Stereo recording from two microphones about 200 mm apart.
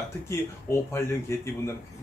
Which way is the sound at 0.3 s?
15° left (ahead or behind).